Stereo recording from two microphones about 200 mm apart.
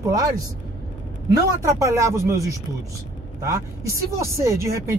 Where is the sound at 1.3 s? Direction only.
15° right (ahead or behind).